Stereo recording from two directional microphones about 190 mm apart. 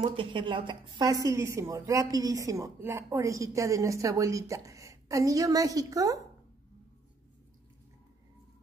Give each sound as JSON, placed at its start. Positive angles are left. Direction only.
{"t": 0.0, "sound": "a woman's voice", "side_deg": -25}